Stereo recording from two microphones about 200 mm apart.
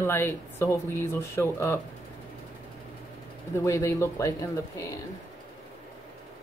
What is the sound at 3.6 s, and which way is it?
Speech, 15° left (ahead or behind).